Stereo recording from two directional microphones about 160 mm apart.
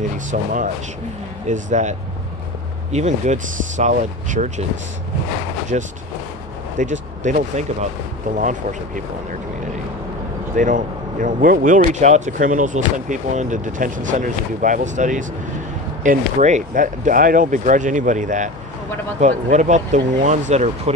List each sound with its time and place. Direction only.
0.3 s speech: 55° right (ahead or behind)
5.7 s speech: 55° right (ahead or behind)
10.5 s speech: 55° right (ahead or behind)